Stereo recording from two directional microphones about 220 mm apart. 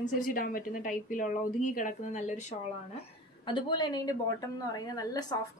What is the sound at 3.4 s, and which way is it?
A woman's voice, 20° left (ahead or behind).